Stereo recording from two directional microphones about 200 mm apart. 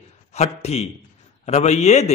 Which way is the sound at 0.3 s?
30° left (ahead or behind).